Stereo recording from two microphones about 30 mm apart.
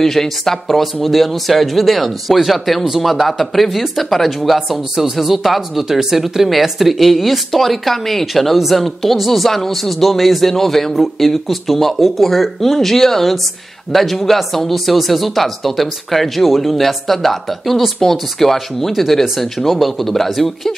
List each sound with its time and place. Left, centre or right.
0.0 s a man's voice: centre